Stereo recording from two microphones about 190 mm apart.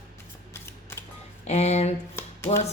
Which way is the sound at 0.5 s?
15° left (ahead or behind).